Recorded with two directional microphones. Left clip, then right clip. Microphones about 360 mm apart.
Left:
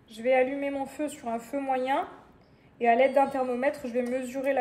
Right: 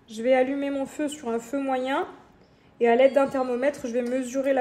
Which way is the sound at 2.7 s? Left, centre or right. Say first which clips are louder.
Right 3 dB; right.